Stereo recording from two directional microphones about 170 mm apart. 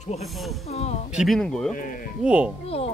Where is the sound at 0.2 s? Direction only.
Centre (ahead or behind).